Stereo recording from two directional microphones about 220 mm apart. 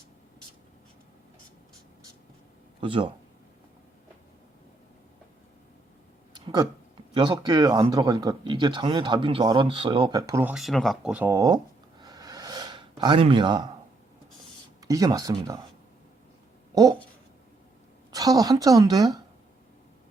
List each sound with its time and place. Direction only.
2.8 s speech: 25° right (ahead or behind)
6.3 s a sound: 20° right (ahead or behind)
7.1 s speech: 20° right (ahead or behind)
14.8 s a woman's voice: 15° right (ahead or behind)
18.1 s a woman's voice: 15° right (ahead or behind)